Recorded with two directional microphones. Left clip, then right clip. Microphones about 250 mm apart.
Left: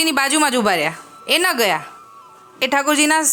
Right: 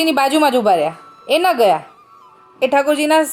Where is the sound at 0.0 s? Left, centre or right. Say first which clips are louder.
Right 3 dB; centre.